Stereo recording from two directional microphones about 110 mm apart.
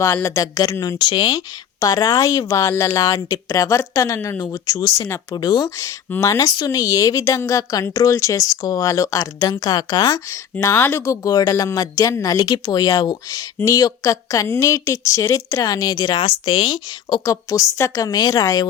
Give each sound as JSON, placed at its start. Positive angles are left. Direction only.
{"t": 0.0, "sound": "speech", "side_deg": 25}
{"t": 10.6, "sound": "a woman's voice", "side_deg": 25}
{"t": 17.2, "sound": "speech", "side_deg": 30}